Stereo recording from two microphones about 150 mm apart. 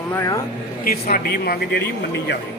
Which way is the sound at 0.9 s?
75° left (ahead or behind).